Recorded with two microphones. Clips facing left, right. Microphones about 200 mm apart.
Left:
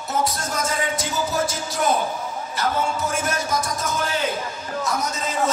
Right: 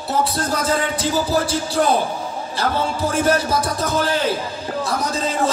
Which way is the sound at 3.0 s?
30° right (ahead or behind).